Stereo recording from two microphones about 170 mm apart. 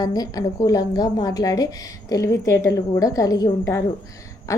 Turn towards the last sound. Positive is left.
turn(degrees=20)  # may be behind; listen again after turning